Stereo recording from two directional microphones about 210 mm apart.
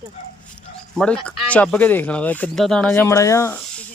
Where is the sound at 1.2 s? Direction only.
5° left (ahead or behind).